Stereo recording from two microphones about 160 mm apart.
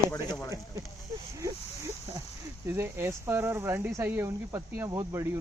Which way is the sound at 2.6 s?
15° right (ahead or behind).